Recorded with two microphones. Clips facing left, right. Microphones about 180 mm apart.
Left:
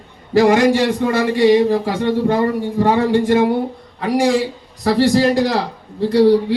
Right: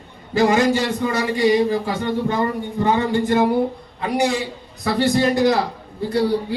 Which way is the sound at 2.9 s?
90° left.